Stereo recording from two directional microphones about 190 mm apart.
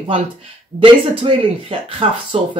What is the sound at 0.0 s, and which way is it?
Speech, 30° right (ahead or behind).